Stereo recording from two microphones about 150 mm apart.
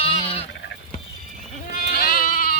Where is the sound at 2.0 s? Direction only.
70° left (ahead or behind).